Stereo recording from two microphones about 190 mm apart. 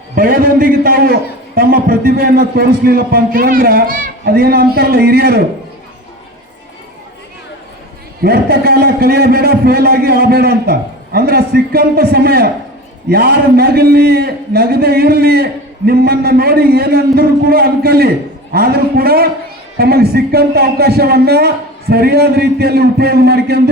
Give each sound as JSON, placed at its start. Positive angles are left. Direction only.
{"t": 0.2, "sound": "a man's voice", "side_deg": -50}
{"t": 8.2, "sound": "a man's voice", "side_deg": -55}